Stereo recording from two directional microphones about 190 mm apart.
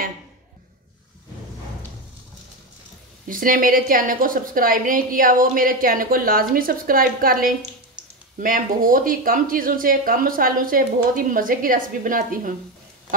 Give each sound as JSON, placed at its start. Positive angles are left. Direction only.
{"t": 3.3, "sound": "a woman's voice", "side_deg": -45}